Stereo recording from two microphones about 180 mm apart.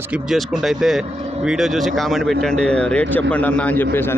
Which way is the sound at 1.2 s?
35° right (ahead or behind).